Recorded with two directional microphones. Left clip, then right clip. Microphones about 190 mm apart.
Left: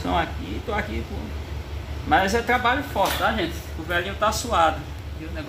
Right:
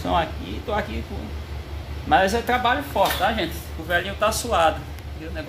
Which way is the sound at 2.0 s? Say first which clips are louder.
Right 1 dB; 20° right (ahead or behind).